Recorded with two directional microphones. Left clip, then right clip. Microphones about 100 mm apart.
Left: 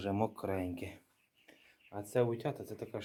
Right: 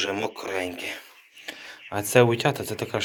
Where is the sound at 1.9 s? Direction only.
5° left (ahead or behind).